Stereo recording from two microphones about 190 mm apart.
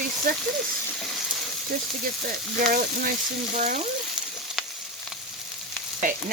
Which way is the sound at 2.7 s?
50° right (ahead or behind).